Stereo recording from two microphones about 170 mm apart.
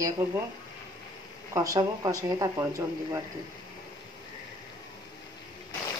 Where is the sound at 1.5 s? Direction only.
20° right (ahead or behind).